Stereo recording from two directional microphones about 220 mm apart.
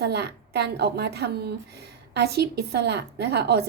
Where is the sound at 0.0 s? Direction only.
45° right (ahead or behind).